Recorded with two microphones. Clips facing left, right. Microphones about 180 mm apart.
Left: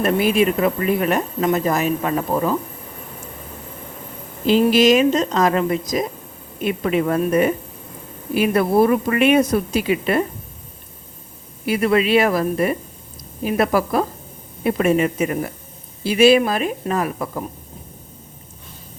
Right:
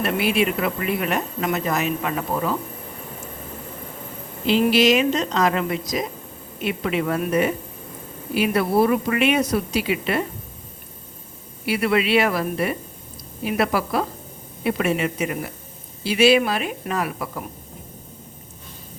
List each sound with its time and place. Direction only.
0.0 s speech: 40° left (ahead or behind)
4.4 s a woman's voice: 45° left (ahead or behind)
11.6 s a woman's voice: 45° left (ahead or behind)